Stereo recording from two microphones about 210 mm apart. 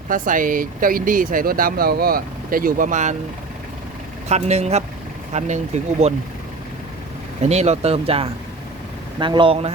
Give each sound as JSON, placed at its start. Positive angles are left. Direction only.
{"t": 0.1, "sound": "speech", "side_deg": -40}
{"t": 4.3, "sound": "speech", "side_deg": -30}
{"t": 7.4, "sound": "speech", "side_deg": -30}